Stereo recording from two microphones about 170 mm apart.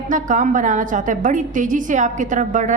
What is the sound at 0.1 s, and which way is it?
A woman's voice, 50° right (ahead or behind).